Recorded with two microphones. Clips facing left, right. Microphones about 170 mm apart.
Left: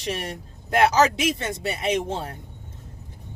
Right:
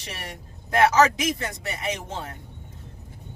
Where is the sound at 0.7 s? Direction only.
30° left (ahead or behind).